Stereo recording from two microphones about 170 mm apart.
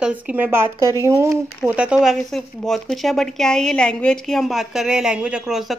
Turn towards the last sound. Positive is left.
turn(degrees=0)  # may be behind; listen again after turning